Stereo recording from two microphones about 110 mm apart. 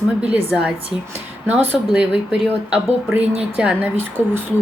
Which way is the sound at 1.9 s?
5° right (ahead or behind).